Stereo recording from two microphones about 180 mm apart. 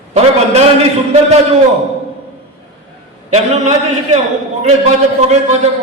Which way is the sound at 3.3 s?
35° right (ahead or behind).